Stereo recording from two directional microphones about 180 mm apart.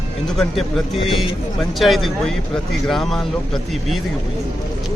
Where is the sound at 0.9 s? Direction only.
30° left (ahead or behind).